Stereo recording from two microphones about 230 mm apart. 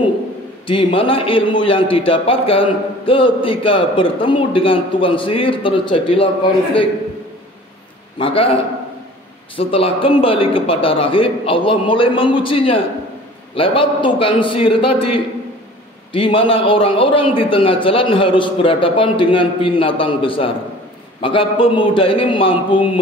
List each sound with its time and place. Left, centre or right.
0.7 s a man's voice: left
8.2 s a man's voice: left
9.6 s a man's voice: left
14.9 s a man's voice: left
16.1 s a man's voice: left